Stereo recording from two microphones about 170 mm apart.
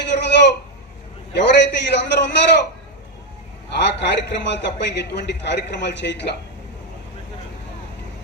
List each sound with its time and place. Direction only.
0.0 s a sound: 90° left
1.4 s a man's voice: 90° left
3.8 s a man's voice: 90° left